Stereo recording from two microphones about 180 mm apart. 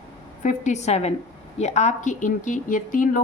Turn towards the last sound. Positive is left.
turn(degrees=45)  # may be behind; listen again after turning